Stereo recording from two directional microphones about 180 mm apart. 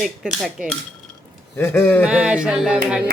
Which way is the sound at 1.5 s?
15° left (ahead or behind).